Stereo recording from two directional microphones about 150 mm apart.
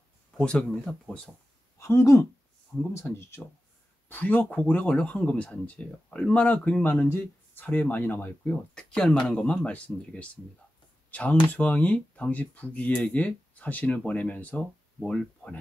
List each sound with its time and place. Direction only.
0.4 s speech: 5° left (ahead or behind)
1.8 s speech: 20° left (ahead or behind)